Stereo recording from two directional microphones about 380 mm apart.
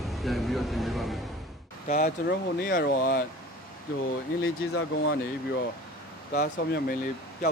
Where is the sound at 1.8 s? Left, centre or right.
Left.